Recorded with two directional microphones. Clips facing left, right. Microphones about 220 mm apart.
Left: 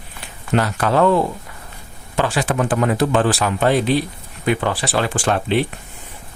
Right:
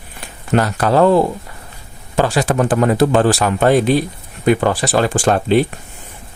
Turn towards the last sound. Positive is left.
turn(degrees=-40)  # may be behind; listen again after turning